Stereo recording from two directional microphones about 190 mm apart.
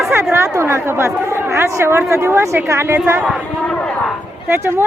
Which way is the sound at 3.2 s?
5° left (ahead or behind).